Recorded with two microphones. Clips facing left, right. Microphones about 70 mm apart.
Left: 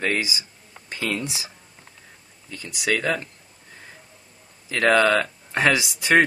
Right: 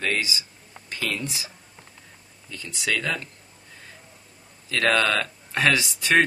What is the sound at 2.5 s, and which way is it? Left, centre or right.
Speech, centre.